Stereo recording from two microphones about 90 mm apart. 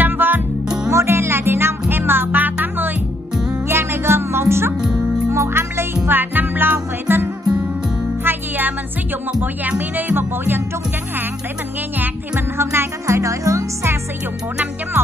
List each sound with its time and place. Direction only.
0.0 s music: 20° right (ahead or behind)
4.8 s music: 10° right (ahead or behind)
5.3 s music: 30° right (ahead or behind)
12.0 s music: 25° right (ahead or behind)